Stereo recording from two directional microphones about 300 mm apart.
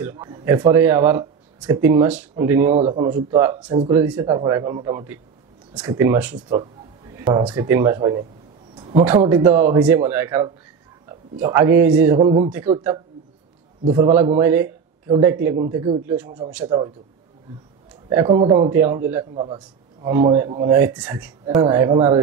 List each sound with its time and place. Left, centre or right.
0.0 s speech: centre
2.7 s a man's voice: centre
8.7 s a sound: centre
9.0 s a man's voice: centre
18.1 s speech: centre